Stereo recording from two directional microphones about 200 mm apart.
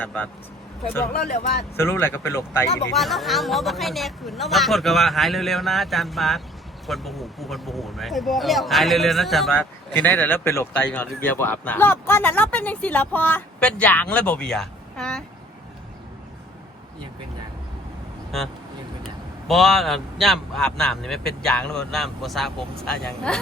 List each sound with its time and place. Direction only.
0.0 s speech: 5° left (ahead or behind)
1.1 s speech: 50° left (ahead or behind)
1.7 s speech: 10° left (ahead or behind)
2.9 s speech: centre (ahead or behind)
19.5 s speech: centre (ahead or behind)